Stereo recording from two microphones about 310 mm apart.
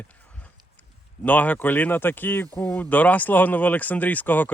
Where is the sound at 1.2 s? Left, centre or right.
Centre.